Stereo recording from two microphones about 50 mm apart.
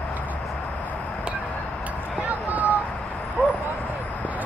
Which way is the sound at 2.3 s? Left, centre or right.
Right.